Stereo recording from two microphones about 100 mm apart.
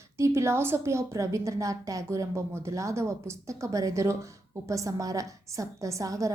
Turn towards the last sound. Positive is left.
turn(degrees=-35)  # may be behind; listen again after turning